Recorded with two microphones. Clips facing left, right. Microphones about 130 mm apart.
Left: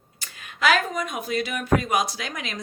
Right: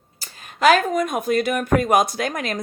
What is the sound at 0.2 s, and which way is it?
Speech, 45° right (ahead or behind).